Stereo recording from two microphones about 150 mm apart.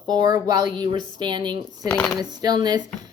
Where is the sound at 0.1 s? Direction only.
30° right (ahead or behind).